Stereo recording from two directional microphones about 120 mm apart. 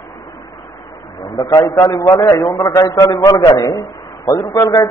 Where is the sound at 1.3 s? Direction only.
35° left (ahead or behind).